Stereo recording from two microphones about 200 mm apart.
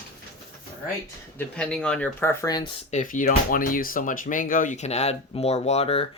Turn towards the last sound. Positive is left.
turn(degrees=30)  # may be behind; listen again after turning